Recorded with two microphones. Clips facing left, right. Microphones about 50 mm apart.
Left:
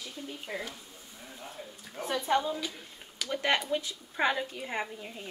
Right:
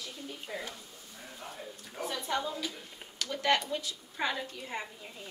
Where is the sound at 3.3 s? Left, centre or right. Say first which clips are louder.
Left 1 dB; left.